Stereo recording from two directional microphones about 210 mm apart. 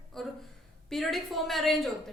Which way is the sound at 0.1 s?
Centre (ahead or behind).